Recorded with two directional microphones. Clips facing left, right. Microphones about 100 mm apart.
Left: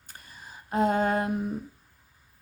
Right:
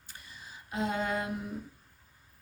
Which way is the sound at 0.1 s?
50° left (ahead or behind).